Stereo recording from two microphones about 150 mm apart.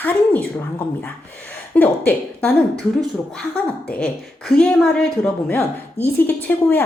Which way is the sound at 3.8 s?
5° left (ahead or behind).